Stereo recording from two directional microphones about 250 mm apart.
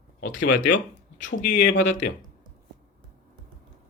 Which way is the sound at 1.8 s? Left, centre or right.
Left.